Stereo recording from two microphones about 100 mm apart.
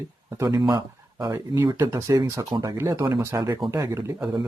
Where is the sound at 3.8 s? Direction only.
40° right (ahead or behind).